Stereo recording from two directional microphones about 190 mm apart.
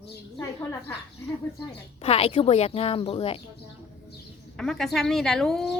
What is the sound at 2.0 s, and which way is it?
A woman's voice, 30° left (ahead or behind).